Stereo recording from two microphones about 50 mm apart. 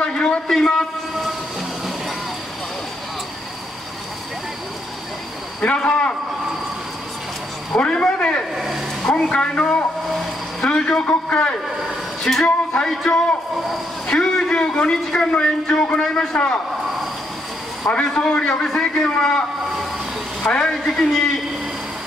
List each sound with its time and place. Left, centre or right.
0.0 s a sound: centre
5.6 s a man's voice: left
7.7 s a man's voice: centre
8.5 s speech: centre
9.0 s a man's voice: left
12.2 s speech: centre
12.4 s a man's voice: centre
12.9 s a man's voice: centre
17.9 s a man's voice: centre
20.6 s a man's voice: centre